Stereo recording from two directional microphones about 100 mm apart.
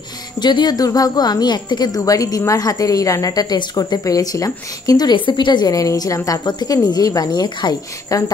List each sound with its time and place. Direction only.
0.4 s a woman's voice: 45° left (ahead or behind)